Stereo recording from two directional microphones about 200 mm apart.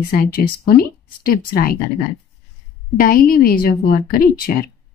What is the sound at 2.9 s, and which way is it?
A woman's voice, 45° left (ahead or behind).